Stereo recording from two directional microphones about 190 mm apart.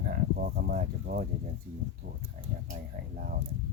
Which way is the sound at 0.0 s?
50° right (ahead or behind).